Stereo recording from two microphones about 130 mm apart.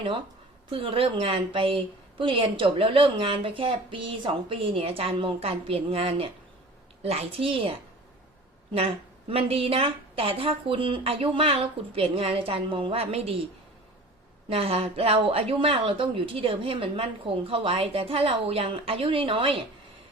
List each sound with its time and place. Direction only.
0.7 s a woman's voice: 45° right (ahead or behind)
9.3 s a woman's voice: 45° right (ahead or behind)
14.5 s a woman's voice: 50° right (ahead or behind)